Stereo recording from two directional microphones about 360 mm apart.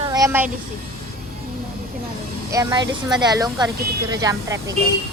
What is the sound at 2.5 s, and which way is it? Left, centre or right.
Speech, centre.